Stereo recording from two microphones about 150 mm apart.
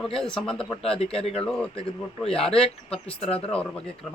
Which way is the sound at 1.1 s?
40° left (ahead or behind).